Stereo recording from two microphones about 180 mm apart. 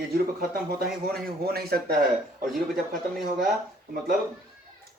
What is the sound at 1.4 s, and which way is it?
Speech, 60° right (ahead or behind).